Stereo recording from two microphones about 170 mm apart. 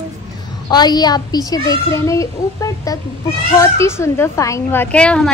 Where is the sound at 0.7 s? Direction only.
25° left (ahead or behind).